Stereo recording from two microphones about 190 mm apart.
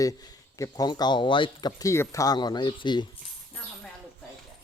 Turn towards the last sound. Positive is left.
turn(degrees=25)  # may be behind; listen again after turning